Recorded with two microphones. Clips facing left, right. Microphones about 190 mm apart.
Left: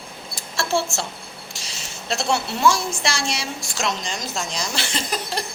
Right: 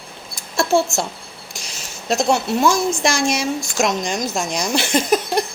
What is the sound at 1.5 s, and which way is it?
A woman's voice, 45° right (ahead or behind).